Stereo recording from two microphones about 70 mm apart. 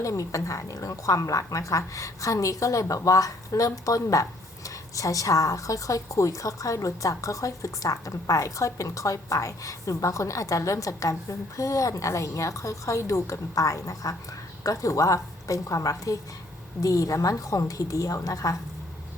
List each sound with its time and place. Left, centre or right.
0.0 s a woman's voice: left